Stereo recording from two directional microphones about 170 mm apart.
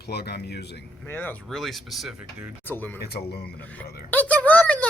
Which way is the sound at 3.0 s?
65° left (ahead or behind).